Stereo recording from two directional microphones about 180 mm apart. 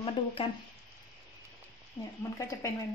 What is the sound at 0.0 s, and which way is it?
Speech, 30° left (ahead or behind).